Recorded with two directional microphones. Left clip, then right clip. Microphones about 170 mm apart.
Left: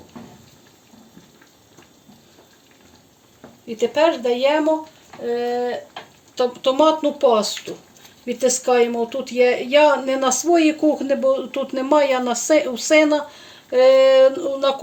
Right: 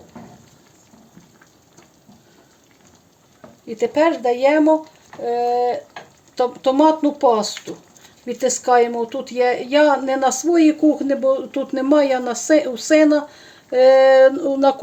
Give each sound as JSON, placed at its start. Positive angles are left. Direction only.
{"t": 4.2, "sound": "a woman's voice", "side_deg": -45}